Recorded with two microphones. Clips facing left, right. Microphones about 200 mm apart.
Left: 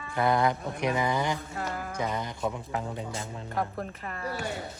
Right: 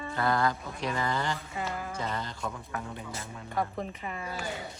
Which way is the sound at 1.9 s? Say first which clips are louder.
Left 3 dB; 15° left (ahead or behind).